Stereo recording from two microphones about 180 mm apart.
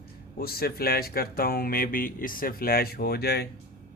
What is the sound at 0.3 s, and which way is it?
Speech, 55° left (ahead or behind).